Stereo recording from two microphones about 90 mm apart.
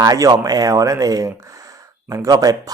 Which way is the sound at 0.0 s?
40° right (ahead or behind).